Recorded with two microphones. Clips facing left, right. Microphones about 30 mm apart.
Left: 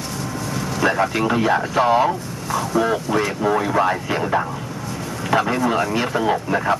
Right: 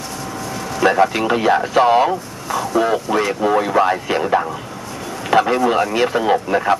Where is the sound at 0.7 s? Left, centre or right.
Centre.